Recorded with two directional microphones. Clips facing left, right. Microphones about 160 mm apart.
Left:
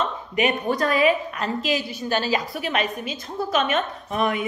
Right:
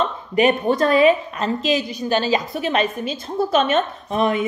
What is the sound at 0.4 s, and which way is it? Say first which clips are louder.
Speech: right 5 dB; 30° right (ahead or behind).